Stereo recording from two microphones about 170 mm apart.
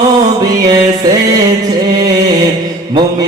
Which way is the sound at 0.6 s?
20° right (ahead or behind).